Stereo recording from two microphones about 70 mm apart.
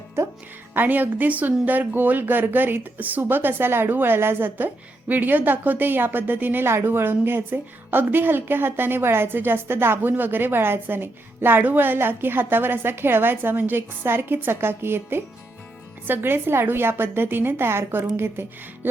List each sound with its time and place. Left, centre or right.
0.7 s a woman's voice: right